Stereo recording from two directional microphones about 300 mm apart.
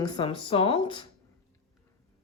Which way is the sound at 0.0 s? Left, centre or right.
Centre.